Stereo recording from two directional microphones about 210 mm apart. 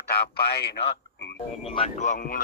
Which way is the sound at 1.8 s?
35° left (ahead or behind).